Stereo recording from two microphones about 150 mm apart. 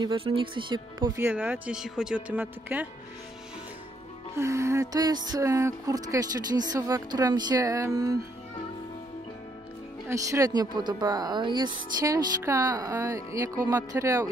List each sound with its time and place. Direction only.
0.0 s speech: 35° right (ahead or behind)
1.2 s speech: 10° right (ahead or behind)
4.4 s speech: 20° right (ahead or behind)
10.0 s speech: 20° right (ahead or behind)